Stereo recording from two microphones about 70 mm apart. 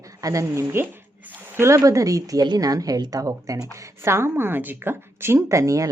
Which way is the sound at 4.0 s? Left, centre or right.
Right.